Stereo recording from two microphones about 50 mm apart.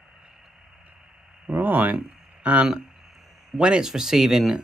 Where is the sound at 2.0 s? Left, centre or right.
Right.